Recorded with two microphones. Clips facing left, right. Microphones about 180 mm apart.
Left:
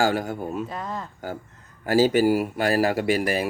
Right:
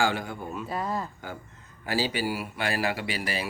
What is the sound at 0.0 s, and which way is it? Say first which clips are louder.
Speech: left 5 dB; 40° left (ahead or behind).